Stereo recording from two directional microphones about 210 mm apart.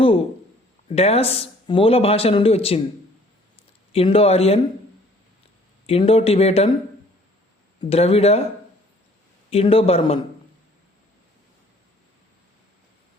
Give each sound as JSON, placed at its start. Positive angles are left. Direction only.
{"t": 0.9, "sound": "speech", "side_deg": 30}
{"t": 3.9, "sound": "speech", "side_deg": 25}
{"t": 5.8, "sound": "speech", "side_deg": 30}
{"t": 7.8, "sound": "speech", "side_deg": 30}
{"t": 9.5, "sound": "speech", "side_deg": 30}